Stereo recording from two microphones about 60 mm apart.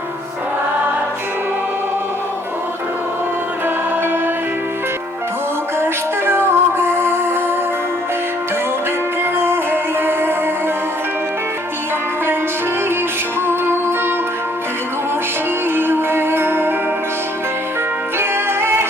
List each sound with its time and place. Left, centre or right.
5.8 s music: right
9.4 s music: right
13.5 s music: right
15.7 s music: right
18.2 s music: right